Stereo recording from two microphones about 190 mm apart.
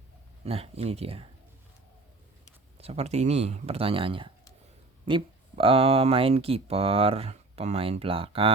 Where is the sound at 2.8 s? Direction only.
35° right (ahead or behind).